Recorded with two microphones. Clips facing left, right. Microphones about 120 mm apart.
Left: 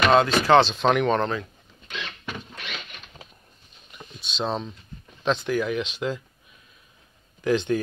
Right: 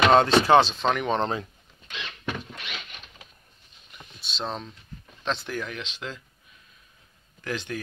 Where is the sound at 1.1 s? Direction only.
25° right (ahead or behind).